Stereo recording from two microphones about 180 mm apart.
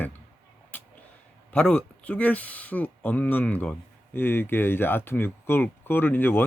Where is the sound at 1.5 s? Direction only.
5° left (ahead or behind).